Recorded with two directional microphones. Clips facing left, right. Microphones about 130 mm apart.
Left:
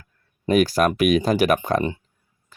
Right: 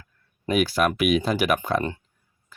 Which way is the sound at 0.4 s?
40° left (ahead or behind).